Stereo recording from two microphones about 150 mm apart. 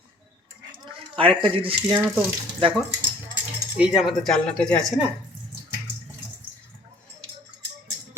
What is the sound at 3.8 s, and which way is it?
Speech, 5° right (ahead or behind).